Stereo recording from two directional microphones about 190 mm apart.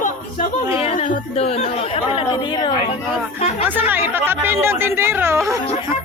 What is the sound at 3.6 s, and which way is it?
Speech, 10° right (ahead or behind).